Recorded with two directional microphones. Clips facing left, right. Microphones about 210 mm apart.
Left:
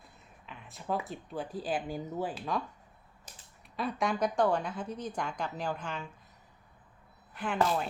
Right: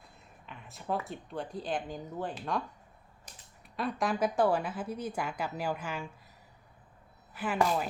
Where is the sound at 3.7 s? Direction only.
Centre (ahead or behind).